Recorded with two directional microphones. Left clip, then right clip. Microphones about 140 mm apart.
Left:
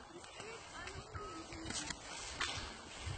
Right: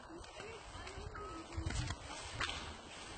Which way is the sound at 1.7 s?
Centre (ahead or behind).